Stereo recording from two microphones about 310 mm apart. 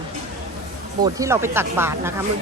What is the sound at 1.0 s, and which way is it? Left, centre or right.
Speech, centre.